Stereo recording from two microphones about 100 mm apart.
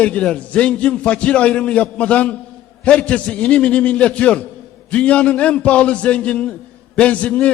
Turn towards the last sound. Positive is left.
turn(degrees=10)  # may be behind; listen again after turning